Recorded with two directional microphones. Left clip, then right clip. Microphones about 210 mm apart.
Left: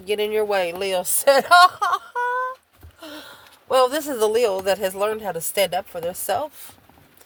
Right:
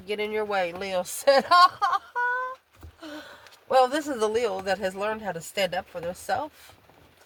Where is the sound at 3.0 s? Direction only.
40° left (ahead or behind).